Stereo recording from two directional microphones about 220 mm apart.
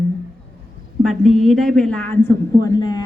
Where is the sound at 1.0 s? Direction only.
Centre (ahead or behind).